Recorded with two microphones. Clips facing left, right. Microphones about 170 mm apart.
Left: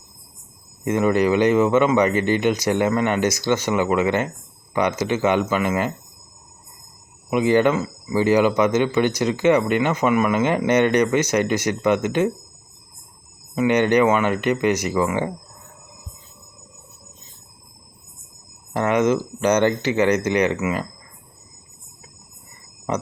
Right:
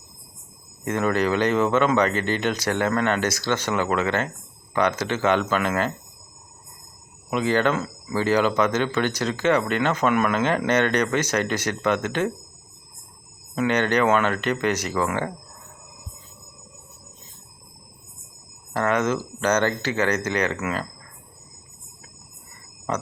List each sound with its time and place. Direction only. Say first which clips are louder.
0.9 s speech: left 4 dB; 10° left (ahead or behind)
7.3 s speech: left 4 dB; 15° left (ahead or behind)
13.6 s speech: left 4 dB; 15° left (ahead or behind)
18.7 s speech: left 4 dB; 15° left (ahead or behind)
22.9 s speech: left 3 dB; 15° left (ahead or behind)